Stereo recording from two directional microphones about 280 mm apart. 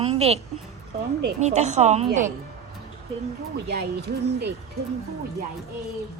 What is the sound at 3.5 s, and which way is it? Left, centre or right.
Speech, right.